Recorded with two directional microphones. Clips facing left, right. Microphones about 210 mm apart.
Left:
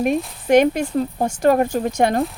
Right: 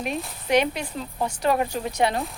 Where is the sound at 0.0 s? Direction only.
50° left (ahead or behind).